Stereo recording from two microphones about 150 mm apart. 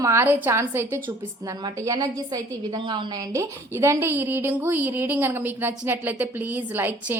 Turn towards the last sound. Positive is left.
turn(degrees=-15)  # may be behind; listen again after turning